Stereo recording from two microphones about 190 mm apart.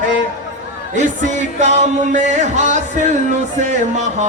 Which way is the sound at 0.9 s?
40° right (ahead or behind).